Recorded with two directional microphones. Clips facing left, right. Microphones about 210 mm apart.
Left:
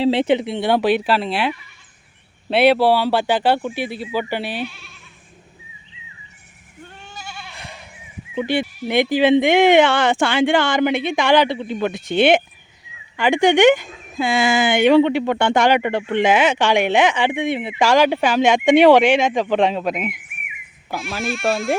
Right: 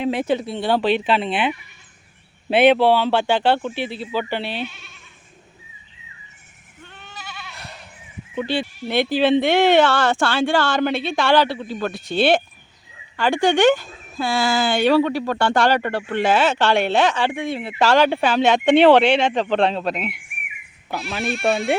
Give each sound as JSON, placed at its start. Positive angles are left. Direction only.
{"t": 0.0, "sound": "speech", "side_deg": 30}
{"t": 2.7, "sound": "speech", "side_deg": 10}
{"t": 4.6, "sound": "speech", "side_deg": 0}
{"t": 6.8, "sound": "goat", "side_deg": 30}
{"t": 8.4, "sound": "speech", "side_deg": 10}